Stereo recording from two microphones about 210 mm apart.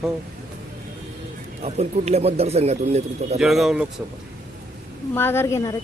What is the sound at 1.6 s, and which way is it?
Speech, 30° right (ahead or behind).